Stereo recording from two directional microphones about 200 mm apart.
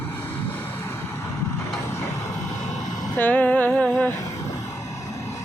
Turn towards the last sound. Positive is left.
turn(degrees=5)  # may be behind; listen again after turning